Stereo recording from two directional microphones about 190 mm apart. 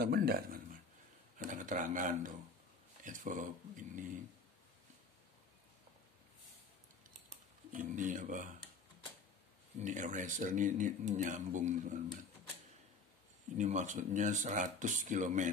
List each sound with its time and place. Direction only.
0.0 s speech: 55° right (ahead or behind)
7.2 s a sound: 40° right (ahead or behind)
9.8 s speech: 40° right (ahead or behind)
13.6 s speech: 40° right (ahead or behind)